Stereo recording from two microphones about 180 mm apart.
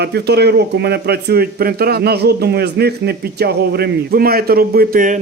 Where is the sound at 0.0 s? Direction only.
65° right (ahead or behind).